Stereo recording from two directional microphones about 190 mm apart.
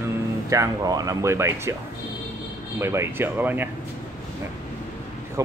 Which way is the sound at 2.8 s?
15° right (ahead or behind).